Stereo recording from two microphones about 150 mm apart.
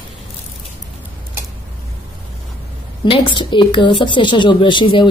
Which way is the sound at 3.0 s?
35° left (ahead or behind).